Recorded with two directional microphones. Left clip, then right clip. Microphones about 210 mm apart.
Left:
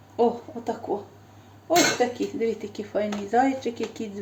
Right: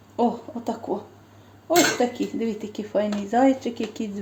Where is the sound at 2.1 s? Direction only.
25° right (ahead or behind).